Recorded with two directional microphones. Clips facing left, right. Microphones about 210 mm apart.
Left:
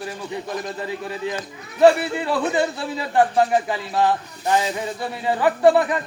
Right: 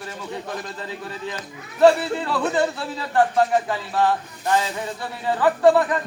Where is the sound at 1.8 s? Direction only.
15° left (ahead or behind).